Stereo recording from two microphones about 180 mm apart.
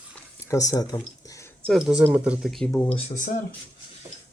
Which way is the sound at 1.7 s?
Centre (ahead or behind).